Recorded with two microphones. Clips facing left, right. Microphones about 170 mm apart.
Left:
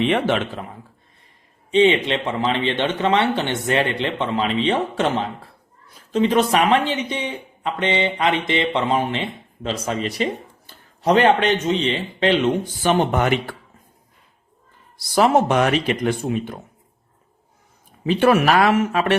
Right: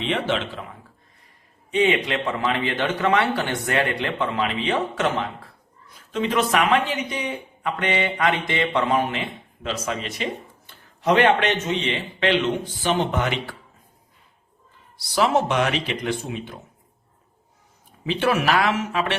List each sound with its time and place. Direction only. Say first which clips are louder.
0.0 s speech: left 5 dB; 55° left (ahead or behind)
1.7 s a man's voice: left 4 dB; 25° left (ahead or behind)
12.8 s speech: left 4 dB; 50° left (ahead or behind)
14.9 s speech: left 4 dB; 50° left (ahead or behind)
18.0 s speech: left 5 dB; 50° left (ahead or behind)